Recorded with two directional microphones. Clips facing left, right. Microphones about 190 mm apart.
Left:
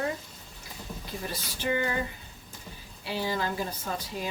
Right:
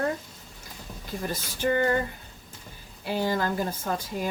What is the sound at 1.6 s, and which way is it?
Speech, 45° right (ahead or behind).